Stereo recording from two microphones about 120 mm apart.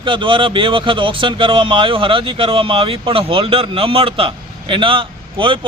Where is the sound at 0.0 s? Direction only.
45° right (ahead or behind).